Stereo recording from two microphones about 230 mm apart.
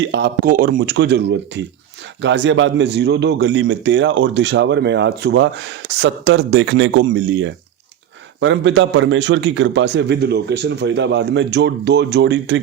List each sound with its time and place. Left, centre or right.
0.1 s a man's voice: right